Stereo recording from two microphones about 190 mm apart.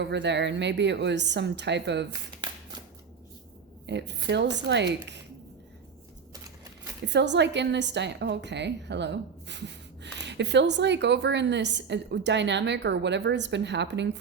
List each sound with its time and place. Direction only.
0.0 s a woman's voice: 65° right (ahead or behind)
3.8 s a woman's voice: 65° right (ahead or behind)
7.0 s a woman's voice: 65° right (ahead or behind)